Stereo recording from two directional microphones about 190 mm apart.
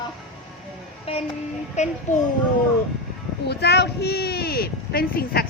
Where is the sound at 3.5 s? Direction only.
60° left (ahead or behind).